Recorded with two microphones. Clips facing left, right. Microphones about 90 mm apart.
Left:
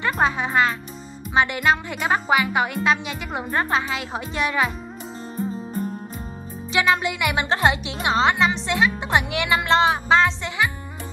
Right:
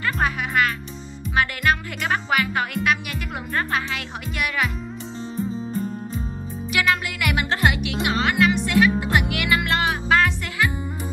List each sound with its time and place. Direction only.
0.0 s speech: 25° left (ahead or behind)
6.7 s music: 30° left (ahead or behind)